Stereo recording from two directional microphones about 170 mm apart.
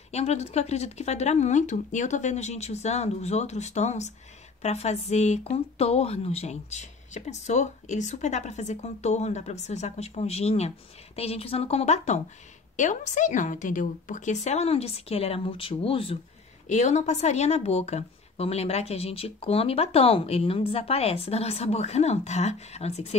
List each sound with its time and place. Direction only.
0.1 s speech: 40° left (ahead or behind)
16.6 s speech: 45° left (ahead or behind)